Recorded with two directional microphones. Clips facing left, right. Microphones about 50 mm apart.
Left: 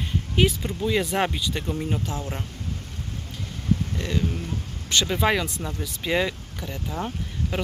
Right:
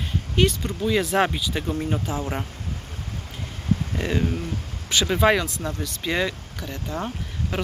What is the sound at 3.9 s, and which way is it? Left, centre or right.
Speech, right.